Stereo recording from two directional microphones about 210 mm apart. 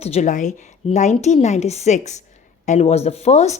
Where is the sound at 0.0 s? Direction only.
30° left (ahead or behind).